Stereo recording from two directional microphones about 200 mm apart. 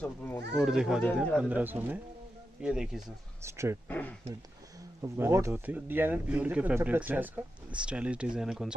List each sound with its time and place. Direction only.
0.0 s speech: 10° left (ahead or behind)
0.6 s a man's voice: 5° right (ahead or behind)
5.0 s a man's voice: 15° right (ahead or behind)